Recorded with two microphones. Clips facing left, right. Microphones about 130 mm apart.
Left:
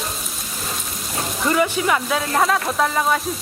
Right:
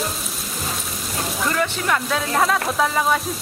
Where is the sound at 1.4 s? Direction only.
10° left (ahead or behind).